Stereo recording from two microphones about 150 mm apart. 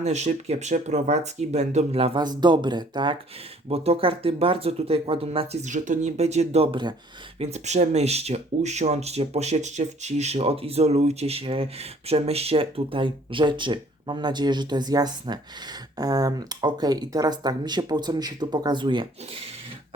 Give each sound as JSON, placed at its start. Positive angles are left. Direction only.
{"t": 0.0, "sound": "speech", "side_deg": -50}
{"t": 3.7, "sound": "speech", "side_deg": -40}
{"t": 5.6, "sound": "speech", "side_deg": -55}
{"t": 7.3, "sound": "speech", "side_deg": -45}